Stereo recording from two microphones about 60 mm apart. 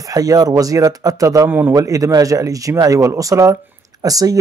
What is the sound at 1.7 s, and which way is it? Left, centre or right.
Speech, right.